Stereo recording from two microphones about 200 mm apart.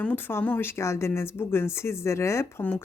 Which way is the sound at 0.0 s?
10° left (ahead or behind).